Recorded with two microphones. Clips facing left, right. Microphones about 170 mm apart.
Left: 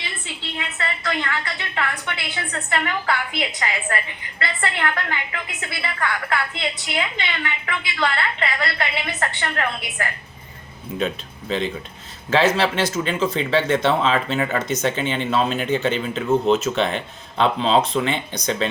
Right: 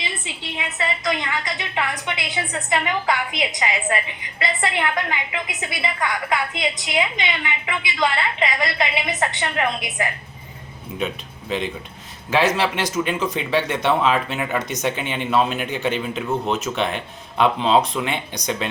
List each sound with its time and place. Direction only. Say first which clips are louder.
0.5 s a woman's voice: right 3 dB; 15° right (ahead or behind)